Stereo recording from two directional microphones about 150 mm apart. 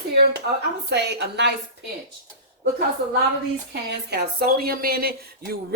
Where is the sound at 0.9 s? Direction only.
90° right.